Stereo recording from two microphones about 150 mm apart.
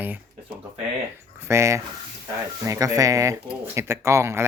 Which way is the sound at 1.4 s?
20° right (ahead or behind).